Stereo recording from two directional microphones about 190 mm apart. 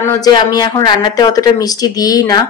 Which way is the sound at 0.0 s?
20° left (ahead or behind).